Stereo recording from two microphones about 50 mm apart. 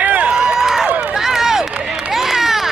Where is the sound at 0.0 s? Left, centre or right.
Right.